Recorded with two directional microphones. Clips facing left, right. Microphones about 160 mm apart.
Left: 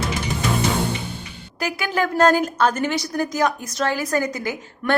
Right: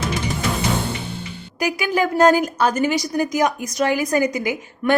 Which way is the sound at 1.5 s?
10° right (ahead or behind).